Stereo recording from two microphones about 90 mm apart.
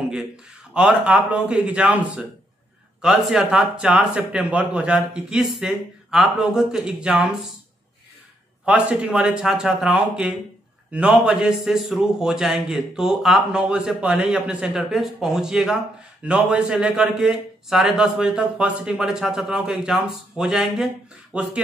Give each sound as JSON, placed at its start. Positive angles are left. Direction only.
{"t": 0.7, "sound": "a man's voice", "side_deg": -10}
{"t": 8.6, "sound": "a man's voice", "side_deg": -10}